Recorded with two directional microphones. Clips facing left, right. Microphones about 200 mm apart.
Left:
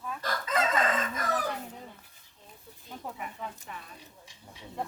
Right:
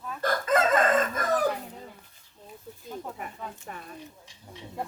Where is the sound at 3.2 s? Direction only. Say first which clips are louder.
Right 1 dB; 45° right (ahead or behind).